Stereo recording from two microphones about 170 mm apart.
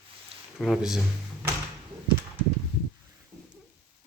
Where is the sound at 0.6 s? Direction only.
Centre (ahead or behind).